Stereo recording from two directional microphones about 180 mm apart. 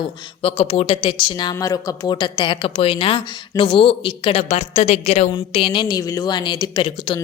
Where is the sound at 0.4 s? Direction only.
30° left (ahead or behind).